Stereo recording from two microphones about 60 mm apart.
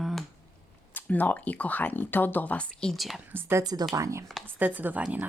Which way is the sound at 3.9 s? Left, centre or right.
Right.